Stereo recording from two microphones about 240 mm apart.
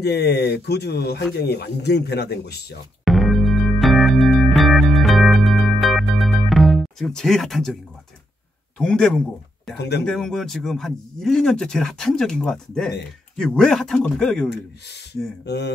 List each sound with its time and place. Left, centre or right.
0.0 s speech: left
3.1 s music: centre
8.7 s speech: centre
9.8 s speech: left
10.0 s speech: centre
15.4 s speech: left